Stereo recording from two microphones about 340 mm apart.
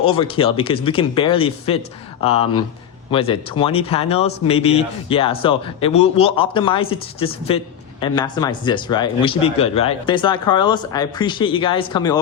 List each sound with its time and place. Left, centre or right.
0.1 s speech: centre